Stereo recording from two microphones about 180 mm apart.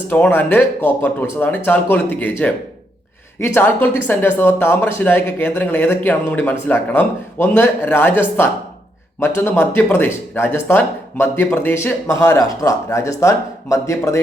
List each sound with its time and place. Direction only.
0.1 s speech: 10° left (ahead or behind)
9.2 s speech: 15° left (ahead or behind)